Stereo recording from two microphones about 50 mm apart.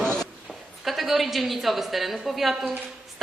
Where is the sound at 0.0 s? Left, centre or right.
Centre.